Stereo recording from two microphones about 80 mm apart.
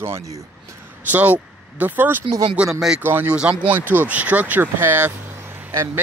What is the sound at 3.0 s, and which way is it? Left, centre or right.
Speech, right.